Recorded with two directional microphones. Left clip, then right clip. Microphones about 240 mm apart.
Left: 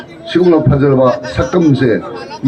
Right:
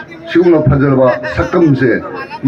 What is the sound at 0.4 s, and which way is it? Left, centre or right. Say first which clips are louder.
A man's voice: left 2 dB; left.